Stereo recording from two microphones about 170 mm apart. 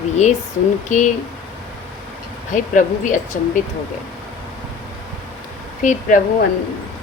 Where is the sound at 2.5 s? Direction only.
50° left (ahead or behind).